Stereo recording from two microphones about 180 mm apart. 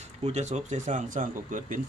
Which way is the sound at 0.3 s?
40° right (ahead or behind).